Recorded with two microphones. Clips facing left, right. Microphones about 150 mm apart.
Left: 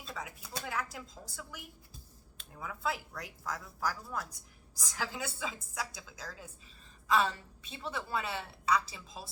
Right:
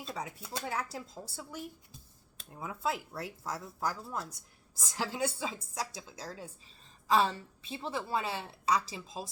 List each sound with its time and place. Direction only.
0.0 s a woman's voice: 25° right (ahead or behind)